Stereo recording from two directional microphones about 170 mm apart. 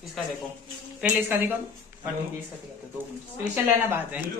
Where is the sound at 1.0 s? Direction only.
10° right (ahead or behind).